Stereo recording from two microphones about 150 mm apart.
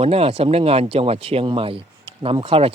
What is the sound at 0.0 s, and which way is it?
Speech, 40° right (ahead or behind).